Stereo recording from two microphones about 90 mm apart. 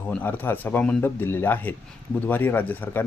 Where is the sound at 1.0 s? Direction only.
25° left (ahead or behind).